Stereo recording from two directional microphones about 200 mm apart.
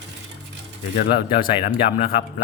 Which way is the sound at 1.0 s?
45° left (ahead or behind).